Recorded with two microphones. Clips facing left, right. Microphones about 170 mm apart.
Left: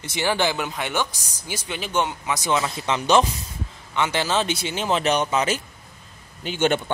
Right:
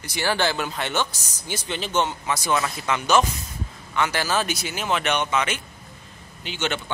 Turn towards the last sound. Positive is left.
turn(degrees=50)  # may be behind; listen again after turning